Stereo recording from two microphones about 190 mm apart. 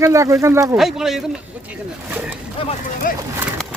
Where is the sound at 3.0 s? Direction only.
50° left (ahead or behind).